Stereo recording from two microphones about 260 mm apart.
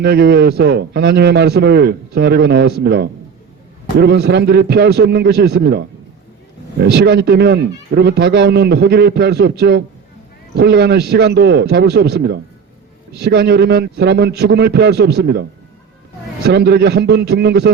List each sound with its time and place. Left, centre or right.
0.0 s speech: right
6.8 s speech: right
16.5 s speech: right